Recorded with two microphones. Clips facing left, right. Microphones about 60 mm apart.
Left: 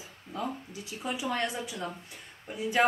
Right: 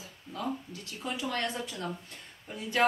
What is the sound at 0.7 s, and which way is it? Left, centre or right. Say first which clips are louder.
Speech: left 2 dB; centre.